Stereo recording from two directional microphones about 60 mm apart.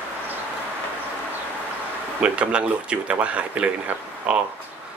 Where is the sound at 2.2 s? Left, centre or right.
Centre.